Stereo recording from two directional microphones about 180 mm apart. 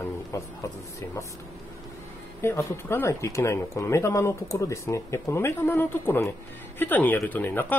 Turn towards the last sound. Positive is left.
turn(degrees=10)  # may be behind; listen again after turning